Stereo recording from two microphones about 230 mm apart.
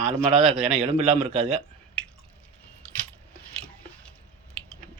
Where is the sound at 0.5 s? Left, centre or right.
Right.